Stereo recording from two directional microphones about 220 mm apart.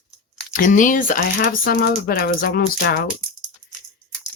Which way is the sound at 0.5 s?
35° left (ahead or behind).